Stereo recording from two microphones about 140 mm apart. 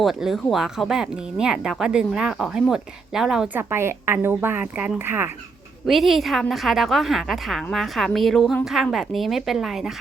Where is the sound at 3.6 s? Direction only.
15° right (ahead or behind).